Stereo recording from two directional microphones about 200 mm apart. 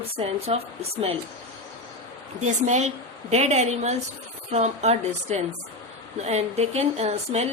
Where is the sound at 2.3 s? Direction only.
35° right (ahead or behind).